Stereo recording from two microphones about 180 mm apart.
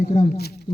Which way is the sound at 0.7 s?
65° left (ahead or behind).